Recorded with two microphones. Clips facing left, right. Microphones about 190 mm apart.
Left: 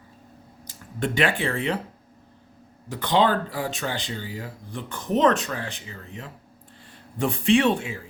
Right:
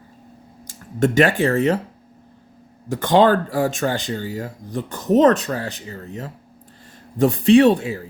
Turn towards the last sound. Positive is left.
turn(degrees=-40)  # may be behind; listen again after turning